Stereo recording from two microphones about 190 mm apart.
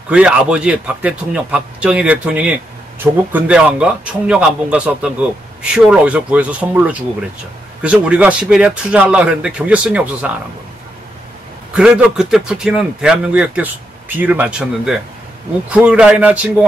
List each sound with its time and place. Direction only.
0.1 s a man's voice: 5° right (ahead or behind)
11.7 s a man's voice: 5° right (ahead or behind)